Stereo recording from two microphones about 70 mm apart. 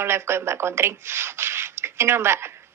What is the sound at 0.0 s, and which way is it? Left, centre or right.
Speech, right.